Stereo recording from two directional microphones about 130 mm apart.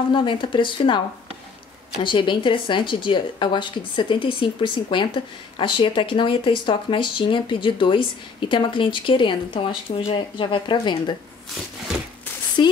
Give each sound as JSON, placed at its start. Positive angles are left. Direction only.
{"t": 0.1, "sound": "a woman's voice", "side_deg": 40}
{"t": 2.0, "sound": "a woman's voice", "side_deg": 40}
{"t": 12.6, "sound": "speech", "side_deg": 35}